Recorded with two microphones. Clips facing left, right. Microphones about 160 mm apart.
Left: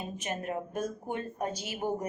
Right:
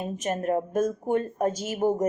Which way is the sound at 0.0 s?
45° right (ahead or behind).